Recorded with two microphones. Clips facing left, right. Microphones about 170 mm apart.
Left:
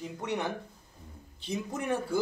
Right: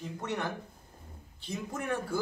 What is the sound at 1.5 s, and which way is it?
Speech, 20° left (ahead or behind).